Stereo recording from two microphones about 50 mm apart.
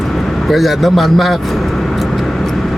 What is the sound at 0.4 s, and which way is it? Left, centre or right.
Speech, centre.